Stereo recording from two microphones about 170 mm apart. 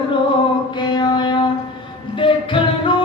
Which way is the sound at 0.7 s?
25° left (ahead or behind).